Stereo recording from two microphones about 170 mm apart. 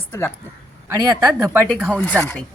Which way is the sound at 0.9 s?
20° right (ahead or behind).